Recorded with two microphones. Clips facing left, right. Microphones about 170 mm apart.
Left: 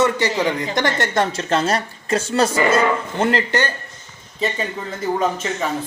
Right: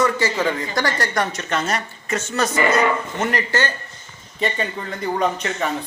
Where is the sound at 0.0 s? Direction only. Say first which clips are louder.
Left 2 dB; 15° left (ahead or behind).